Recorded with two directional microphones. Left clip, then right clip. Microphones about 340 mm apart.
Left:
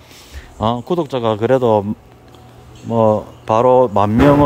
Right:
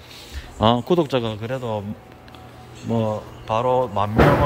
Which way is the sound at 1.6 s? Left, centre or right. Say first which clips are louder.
Left 13 dB; left.